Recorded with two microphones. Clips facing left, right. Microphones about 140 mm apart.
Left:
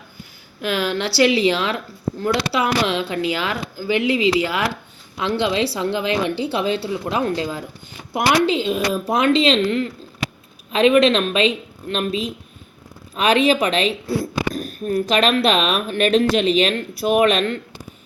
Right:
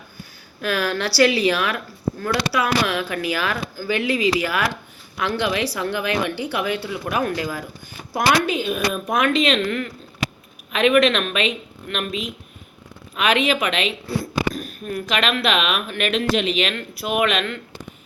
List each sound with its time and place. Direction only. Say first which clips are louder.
0.6 s a woman's voice: left 1 dB; 20° left (ahead or behind); by 17.6 s 35° left (ahead or behind)